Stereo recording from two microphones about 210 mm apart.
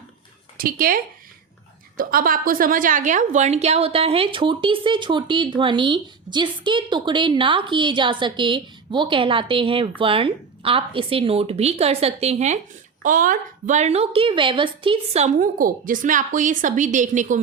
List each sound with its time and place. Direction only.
0.5 s a woman's voice: 45° right (ahead or behind)